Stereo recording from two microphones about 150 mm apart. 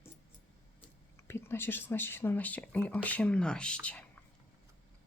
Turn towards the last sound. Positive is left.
turn(degrees=10)  # may be behind; listen again after turning